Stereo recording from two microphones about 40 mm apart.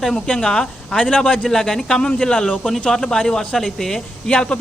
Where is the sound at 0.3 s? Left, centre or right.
Left.